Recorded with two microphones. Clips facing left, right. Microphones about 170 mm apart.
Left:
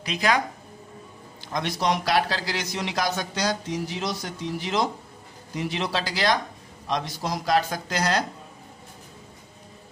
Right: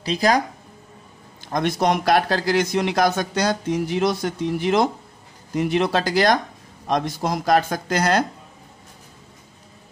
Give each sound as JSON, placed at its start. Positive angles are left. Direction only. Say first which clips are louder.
{"t": 0.0, "sound": "speech", "louder": "right 5 dB", "side_deg": -35}
{"t": 1.5, "sound": "speech", "louder": "right 5 dB", "side_deg": -50}